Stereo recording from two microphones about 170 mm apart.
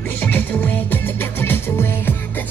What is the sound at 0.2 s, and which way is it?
Music, 10° left (ahead or behind).